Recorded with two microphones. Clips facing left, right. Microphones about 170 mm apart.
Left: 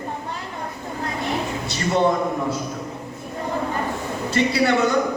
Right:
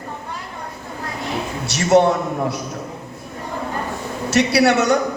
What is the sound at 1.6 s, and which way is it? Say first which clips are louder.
Speech: right 6 dB; 80° right.